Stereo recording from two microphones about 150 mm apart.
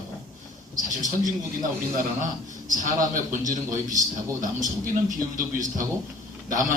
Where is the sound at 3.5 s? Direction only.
60° right (ahead or behind).